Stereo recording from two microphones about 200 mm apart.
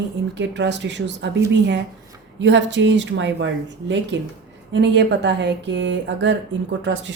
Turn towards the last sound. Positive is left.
turn(degrees=-65)  # may be behind; listen again after turning